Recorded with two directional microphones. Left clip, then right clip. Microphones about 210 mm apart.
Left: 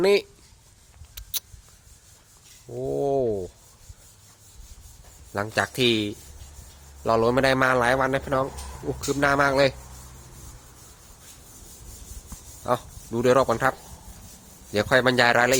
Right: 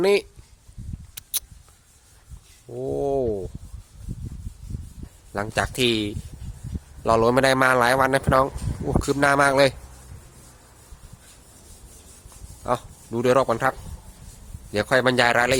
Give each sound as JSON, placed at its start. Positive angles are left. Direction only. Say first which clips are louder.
{"t": 0.0, "sound": "a man's voice", "louder": "even", "side_deg": -10}
{"t": 1.1, "sound": "a sound", "louder": "right 1 dB", "side_deg": -15}
{"t": 2.7, "sound": "a man's voice", "louder": "even", "side_deg": -10}
{"t": 5.3, "sound": "a man's voice", "louder": "even", "side_deg": -10}
{"t": 12.6, "sound": "a man's voice", "louder": "even", "side_deg": -10}